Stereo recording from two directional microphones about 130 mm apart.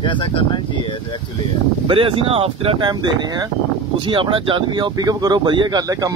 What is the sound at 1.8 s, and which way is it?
Speech, 45° right (ahead or behind).